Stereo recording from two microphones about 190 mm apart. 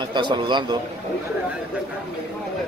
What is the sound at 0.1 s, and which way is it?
Speech, 25° right (ahead or behind).